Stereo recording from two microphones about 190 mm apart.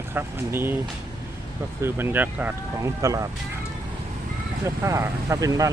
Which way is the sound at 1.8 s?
10° right (ahead or behind).